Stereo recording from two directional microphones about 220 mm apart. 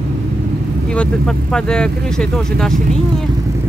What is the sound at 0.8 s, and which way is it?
Speech, 5° left (ahead or behind).